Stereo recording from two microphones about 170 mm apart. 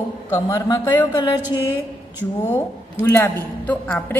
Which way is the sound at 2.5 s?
15° left (ahead or behind).